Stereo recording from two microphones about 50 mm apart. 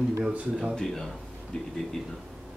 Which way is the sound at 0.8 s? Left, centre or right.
Centre.